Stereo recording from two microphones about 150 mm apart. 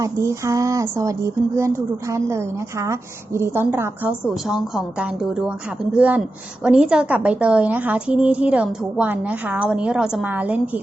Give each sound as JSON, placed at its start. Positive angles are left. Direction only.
{"t": 0.0, "sound": "speech", "side_deg": -20}
{"t": 4.4, "sound": "a woman's voice", "side_deg": -5}